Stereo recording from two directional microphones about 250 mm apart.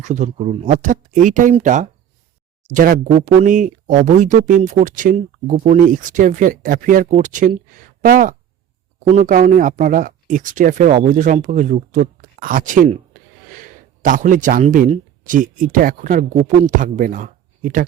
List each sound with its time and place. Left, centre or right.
0.0 s speech: right